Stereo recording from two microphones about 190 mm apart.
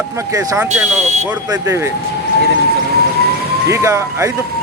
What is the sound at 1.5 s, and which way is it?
Speech, 15° right (ahead or behind).